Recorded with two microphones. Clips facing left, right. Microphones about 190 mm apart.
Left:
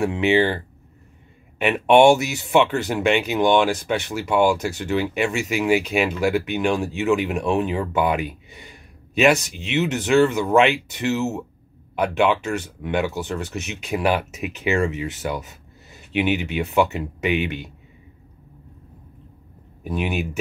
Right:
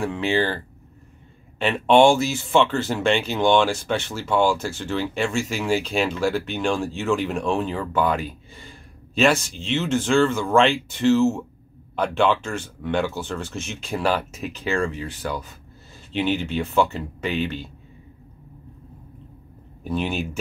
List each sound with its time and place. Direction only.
0.0 s speech: 20° left (ahead or behind)
1.6 s speech: 15° left (ahead or behind)
8.5 s a sound: 15° left (ahead or behind)
10.0 s speech: 5° left (ahead or behind)
19.8 s speech: 10° left (ahead or behind)